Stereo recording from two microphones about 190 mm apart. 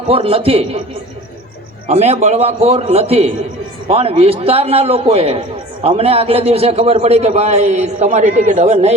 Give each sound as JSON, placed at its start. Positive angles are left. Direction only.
{"t": 0.1, "sound": "a man's voice", "side_deg": -30}
{"t": 1.9, "sound": "a man's voice", "side_deg": -35}